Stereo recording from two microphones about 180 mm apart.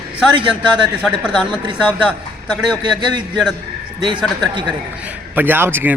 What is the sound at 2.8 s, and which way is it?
Speech, 25° right (ahead or behind).